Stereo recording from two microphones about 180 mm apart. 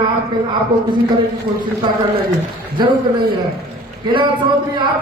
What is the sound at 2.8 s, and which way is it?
Speech, 25° right (ahead or behind).